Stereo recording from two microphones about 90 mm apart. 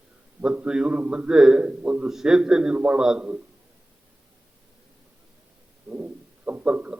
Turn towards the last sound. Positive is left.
turn(degrees=-15)  # may be behind; listen again after turning